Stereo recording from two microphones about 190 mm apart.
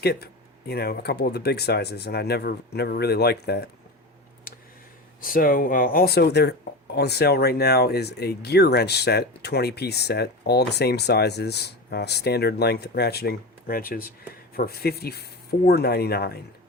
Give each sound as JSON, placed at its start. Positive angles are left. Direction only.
{"t": 0.0, "sound": "speech", "side_deg": 55}
{"t": 4.5, "sound": "a sound", "side_deg": 50}
{"t": 5.2, "sound": "speech", "side_deg": 50}